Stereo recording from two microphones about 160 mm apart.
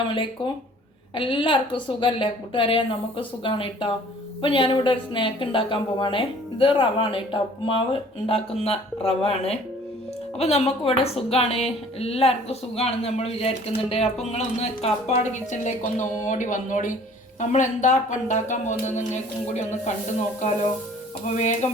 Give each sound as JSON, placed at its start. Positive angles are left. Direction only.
{"t": 0.1, "sound": "a woman's voice", "side_deg": 30}
{"t": 21.3, "sound": "speech", "side_deg": 50}